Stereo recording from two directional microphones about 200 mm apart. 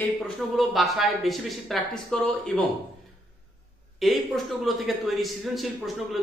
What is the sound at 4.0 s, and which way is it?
Speech, centre (ahead or behind).